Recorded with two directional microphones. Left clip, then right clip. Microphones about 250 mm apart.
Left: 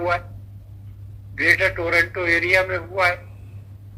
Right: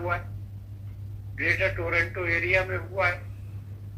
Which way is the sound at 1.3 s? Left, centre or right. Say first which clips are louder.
Left 8 dB; left.